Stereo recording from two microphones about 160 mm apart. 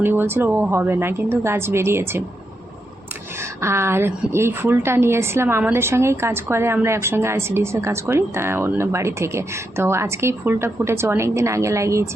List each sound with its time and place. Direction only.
0.0 s a woman's voice: 15° right (ahead or behind)
3.6 s a woman's voice: 15° right (ahead or behind)